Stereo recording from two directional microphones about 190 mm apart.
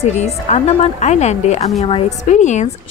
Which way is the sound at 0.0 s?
35° left (ahead or behind).